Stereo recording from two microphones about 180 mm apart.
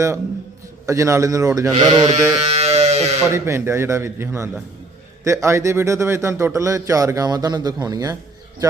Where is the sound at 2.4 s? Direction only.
35° right (ahead or behind).